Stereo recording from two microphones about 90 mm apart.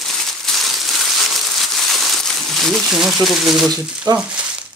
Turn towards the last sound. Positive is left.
turn(degrees=-45)  # may be behind; listen again after turning